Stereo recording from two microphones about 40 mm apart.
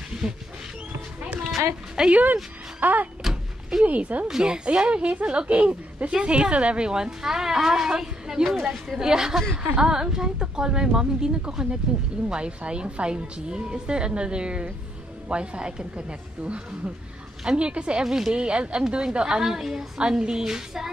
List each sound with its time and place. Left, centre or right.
0.2 s speech: centre
2.0 s a woman's voice: centre
2.8 s power windows: right
3.8 s speech: right
4.4 s a woman's voice: right
18.0 s speech: centre
18.3 s a woman's voice: right
19.4 s speech: centre
20.0 s speech: right